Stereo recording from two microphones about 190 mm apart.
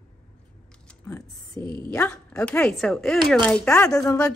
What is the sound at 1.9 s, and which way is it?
Speech, 15° left (ahead or behind).